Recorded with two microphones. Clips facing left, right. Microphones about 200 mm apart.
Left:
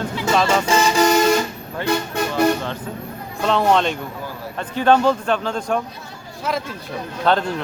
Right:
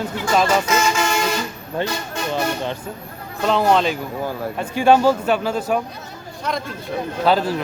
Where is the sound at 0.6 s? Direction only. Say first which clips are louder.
Left 3 dB; 35° left (ahead or behind).